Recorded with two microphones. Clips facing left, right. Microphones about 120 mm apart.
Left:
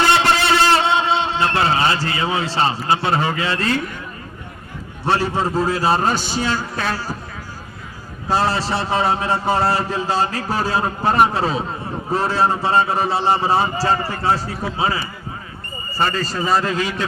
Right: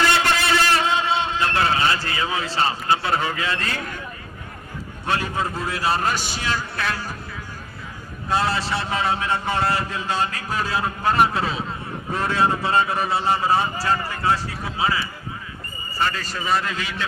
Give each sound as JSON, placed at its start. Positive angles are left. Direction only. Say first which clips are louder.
{"t": 0.0, "sound": "a sound", "louder": "left 4 dB", "side_deg": 30}
{"t": 5.0, "sound": "a man's voice", "louder": "left 5 dB", "side_deg": 30}
{"t": 8.3, "sound": "a man's voice", "louder": "left 3 dB", "side_deg": 30}